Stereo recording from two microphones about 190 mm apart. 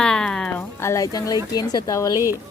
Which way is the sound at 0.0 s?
5° left (ahead or behind).